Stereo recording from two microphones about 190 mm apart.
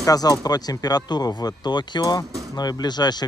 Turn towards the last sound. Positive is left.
turn(degrees=20)  # may be behind; listen again after turning